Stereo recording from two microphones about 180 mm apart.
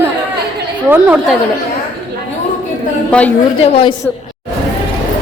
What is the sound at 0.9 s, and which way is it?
Speech, 10° right (ahead or behind).